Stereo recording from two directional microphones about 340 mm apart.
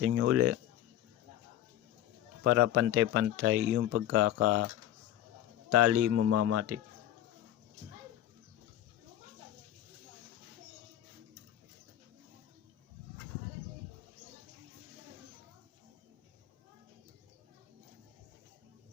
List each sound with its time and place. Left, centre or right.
0.0 s speech: right
2.4 s speech: right
5.7 s speech: right